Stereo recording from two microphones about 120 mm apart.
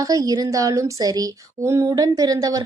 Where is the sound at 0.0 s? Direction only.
30° right (ahead or behind).